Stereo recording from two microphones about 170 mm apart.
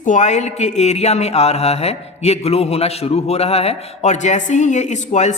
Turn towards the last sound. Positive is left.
turn(degrees=40)  # may be behind; listen again after turning